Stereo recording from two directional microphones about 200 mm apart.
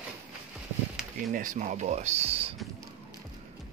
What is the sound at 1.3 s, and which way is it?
Speech, 40° right (ahead or behind).